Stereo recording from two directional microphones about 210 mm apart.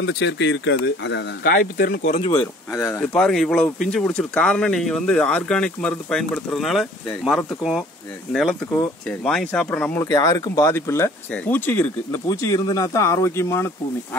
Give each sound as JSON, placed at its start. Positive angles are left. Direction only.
{"t": 0.0, "sound": "speech", "side_deg": 60}
{"t": 3.2, "sound": "speech", "side_deg": 5}